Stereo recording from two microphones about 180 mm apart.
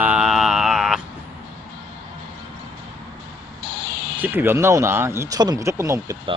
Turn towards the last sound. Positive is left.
turn(degrees=-15)  # may be behind; listen again after turning